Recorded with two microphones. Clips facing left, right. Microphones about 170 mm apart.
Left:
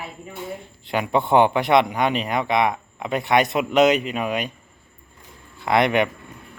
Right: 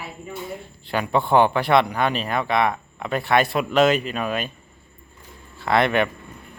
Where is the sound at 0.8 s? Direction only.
20° left (ahead or behind).